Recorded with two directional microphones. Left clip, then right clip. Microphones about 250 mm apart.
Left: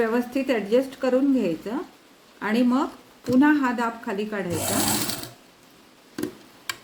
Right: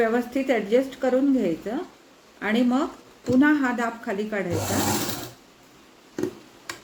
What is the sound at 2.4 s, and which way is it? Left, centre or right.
Speech, left.